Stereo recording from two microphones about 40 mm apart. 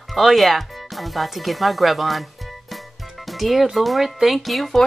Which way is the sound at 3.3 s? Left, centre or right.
Centre.